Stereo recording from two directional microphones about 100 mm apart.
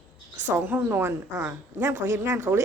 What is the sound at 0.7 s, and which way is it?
Speech, 20° right (ahead or behind).